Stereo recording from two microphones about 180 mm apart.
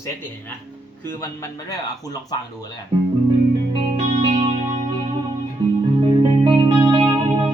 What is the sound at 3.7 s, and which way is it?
Music, 35° right (ahead or behind).